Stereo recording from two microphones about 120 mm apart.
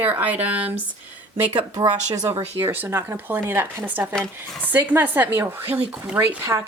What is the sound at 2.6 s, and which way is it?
Speech, 20° right (ahead or behind).